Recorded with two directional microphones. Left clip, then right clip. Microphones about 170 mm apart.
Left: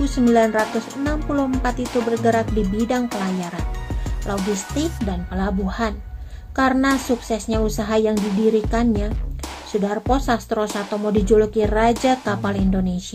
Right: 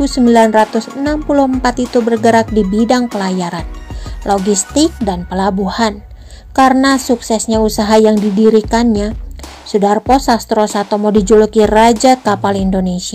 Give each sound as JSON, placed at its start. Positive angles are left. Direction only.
{"t": 0.0, "sound": "speech", "side_deg": -40}
{"t": 4.2, "sound": "speech", "side_deg": -40}
{"t": 8.1, "sound": "speech", "side_deg": 0}
{"t": 8.4, "sound": "speech", "side_deg": -45}